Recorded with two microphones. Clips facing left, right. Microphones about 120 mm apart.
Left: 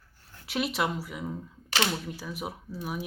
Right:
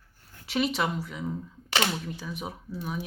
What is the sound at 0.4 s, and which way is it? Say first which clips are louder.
Speech: right 2 dB; centre (ahead or behind).